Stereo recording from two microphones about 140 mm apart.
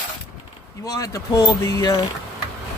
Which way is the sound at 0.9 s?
25° left (ahead or behind).